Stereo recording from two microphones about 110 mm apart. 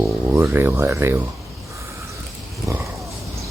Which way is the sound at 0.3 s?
20° right (ahead or behind).